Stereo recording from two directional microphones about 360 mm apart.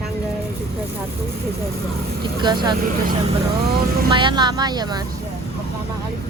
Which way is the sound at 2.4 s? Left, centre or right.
Centre.